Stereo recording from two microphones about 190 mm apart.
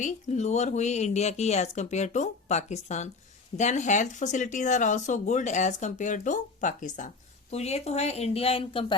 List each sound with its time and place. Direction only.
0.0 s speech: 35° left (ahead or behind)